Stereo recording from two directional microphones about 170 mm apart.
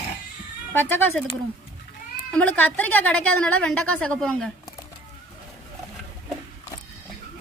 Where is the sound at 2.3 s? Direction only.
10° left (ahead or behind).